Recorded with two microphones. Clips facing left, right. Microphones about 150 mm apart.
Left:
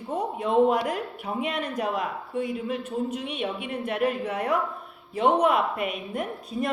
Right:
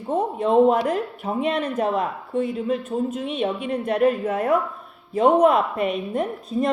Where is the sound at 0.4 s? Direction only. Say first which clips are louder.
Right 4 dB; 35° right (ahead or behind).